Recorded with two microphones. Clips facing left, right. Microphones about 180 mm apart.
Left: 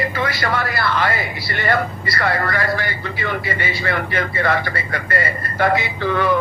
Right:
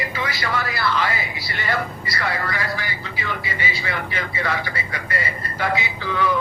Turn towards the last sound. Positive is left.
turn(degrees=55)  # may be behind; listen again after turning